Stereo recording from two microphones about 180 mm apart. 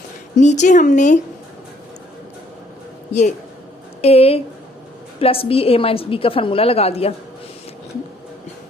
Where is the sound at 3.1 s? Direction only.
40° left (ahead or behind).